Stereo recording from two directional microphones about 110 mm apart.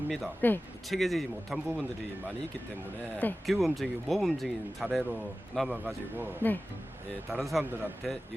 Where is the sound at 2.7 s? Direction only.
15° left (ahead or behind).